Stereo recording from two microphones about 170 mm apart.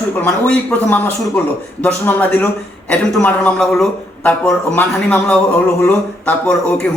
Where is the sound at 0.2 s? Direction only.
10° left (ahead or behind).